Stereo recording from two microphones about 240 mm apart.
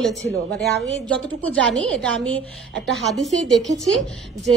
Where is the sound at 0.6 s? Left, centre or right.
Right.